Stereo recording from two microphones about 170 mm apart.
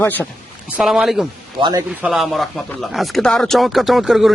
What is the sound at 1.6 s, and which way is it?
Speech, 25° right (ahead or behind).